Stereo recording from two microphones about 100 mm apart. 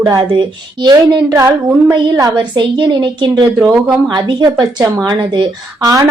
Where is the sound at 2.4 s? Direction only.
45° right (ahead or behind).